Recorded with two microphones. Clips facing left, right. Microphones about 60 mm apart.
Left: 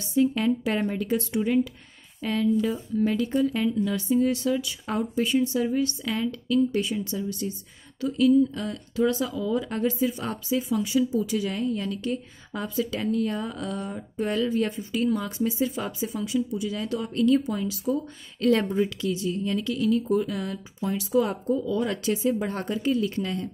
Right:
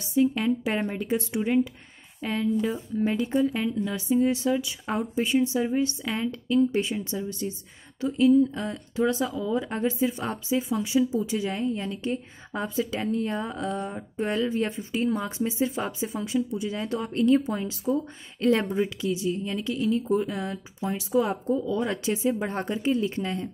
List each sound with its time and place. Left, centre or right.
0.0 s a woman's voice: centre; by 17.7 s right
17.8 s a woman's voice: centre